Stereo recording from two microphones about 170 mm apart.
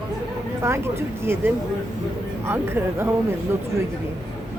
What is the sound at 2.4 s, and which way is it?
Speech, 15° right (ahead or behind).